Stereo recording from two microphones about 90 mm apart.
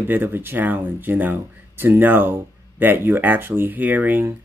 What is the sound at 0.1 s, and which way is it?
Speech, 25° right (ahead or behind).